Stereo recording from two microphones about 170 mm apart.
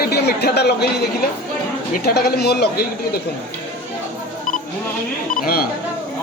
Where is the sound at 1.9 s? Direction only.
65° left (ahead or behind).